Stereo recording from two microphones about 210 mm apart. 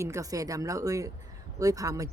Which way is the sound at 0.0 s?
15° right (ahead or behind).